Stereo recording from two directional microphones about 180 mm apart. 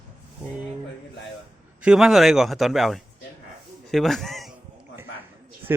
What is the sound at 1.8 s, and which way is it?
A man's voice, 5° right (ahead or behind).